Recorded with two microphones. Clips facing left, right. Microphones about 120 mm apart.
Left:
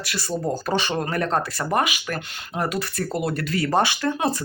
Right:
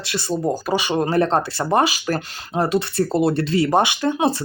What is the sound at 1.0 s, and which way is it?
Speech, 30° right (ahead or behind).